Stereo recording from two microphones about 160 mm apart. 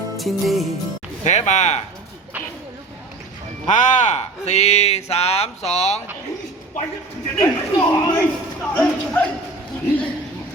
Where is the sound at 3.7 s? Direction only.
50° left (ahead or behind).